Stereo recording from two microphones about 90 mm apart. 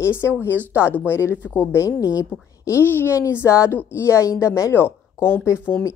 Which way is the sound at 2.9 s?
30° left (ahead or behind).